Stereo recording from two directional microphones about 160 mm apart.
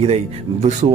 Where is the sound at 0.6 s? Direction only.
45° right (ahead or behind).